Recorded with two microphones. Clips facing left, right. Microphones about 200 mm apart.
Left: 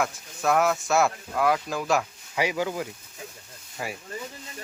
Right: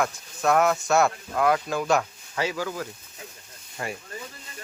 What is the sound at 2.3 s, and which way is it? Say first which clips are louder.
Speech: left 2 dB; 15° left (ahead or behind).